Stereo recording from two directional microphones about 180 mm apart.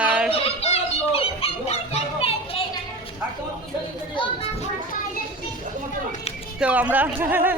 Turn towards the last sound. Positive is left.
turn(degrees=-10)  # may be behind; listen again after turning